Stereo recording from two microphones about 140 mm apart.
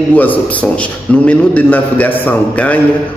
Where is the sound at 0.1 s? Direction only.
10° left (ahead or behind).